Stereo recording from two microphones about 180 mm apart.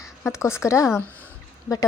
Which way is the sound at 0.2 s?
15° left (ahead or behind).